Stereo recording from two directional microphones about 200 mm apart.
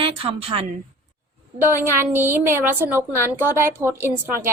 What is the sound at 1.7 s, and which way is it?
A woman's voice, 10° right (ahead or behind).